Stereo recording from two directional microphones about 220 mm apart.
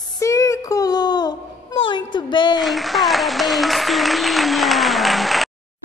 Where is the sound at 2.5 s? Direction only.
Centre (ahead or behind).